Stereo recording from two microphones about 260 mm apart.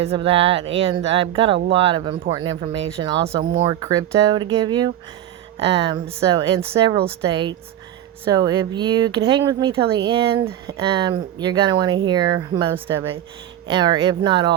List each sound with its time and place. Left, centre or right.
0.0 s speech: right
6.1 s speech: centre